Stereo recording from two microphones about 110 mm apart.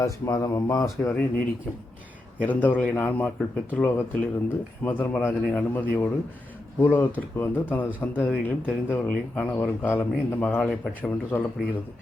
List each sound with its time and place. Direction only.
0.3 s speech: 35° left (ahead or behind)
2.4 s speech: 15° left (ahead or behind)